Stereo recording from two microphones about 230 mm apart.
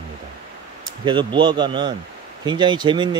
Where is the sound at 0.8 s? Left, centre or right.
Right.